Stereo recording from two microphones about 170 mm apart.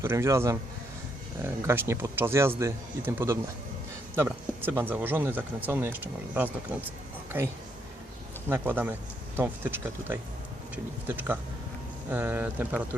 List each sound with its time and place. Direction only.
0.0 s speech: 15° right (ahead or behind)